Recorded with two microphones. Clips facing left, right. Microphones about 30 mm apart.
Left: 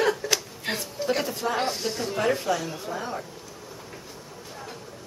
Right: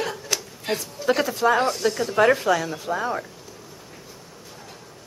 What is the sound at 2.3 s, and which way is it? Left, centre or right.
Speech, right.